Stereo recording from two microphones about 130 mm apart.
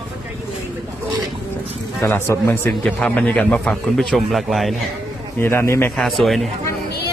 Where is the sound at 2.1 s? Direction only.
20° left (ahead or behind).